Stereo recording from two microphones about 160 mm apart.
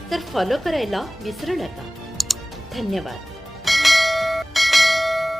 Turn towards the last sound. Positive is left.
turn(degrees=0)  # may be behind; listen again after turning